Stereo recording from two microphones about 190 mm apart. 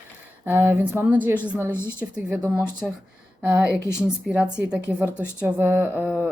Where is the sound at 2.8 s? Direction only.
5° right (ahead or behind).